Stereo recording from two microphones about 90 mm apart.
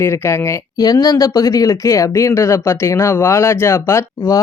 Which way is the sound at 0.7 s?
45° left (ahead or behind).